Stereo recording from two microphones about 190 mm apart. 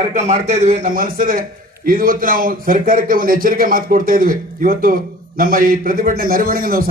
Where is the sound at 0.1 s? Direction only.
40° right (ahead or behind).